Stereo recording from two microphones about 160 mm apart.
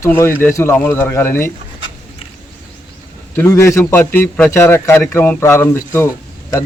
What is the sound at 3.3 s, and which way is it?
A man's voice, 15° left (ahead or behind).